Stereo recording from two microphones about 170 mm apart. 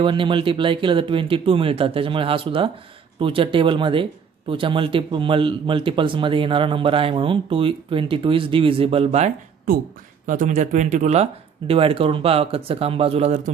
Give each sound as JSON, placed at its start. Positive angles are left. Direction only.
{"t": 0.0, "sound": "a man's voice", "side_deg": -30}
{"t": 10.2, "sound": "a man's voice", "side_deg": -50}